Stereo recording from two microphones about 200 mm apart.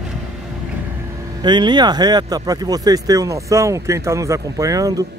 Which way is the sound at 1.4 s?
20° right (ahead or behind).